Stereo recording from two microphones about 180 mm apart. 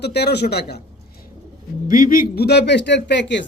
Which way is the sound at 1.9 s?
50° left (ahead or behind).